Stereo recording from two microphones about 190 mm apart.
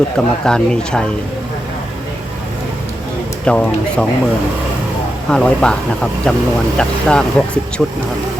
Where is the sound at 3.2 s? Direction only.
5° left (ahead or behind).